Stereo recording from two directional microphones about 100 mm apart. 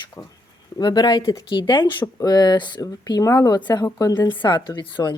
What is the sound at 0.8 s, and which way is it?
Speech, 45° left (ahead or behind).